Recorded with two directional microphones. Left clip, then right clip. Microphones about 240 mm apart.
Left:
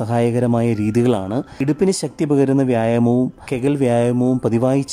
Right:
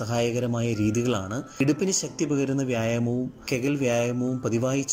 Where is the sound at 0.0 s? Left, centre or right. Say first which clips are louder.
Left 8 dB; centre.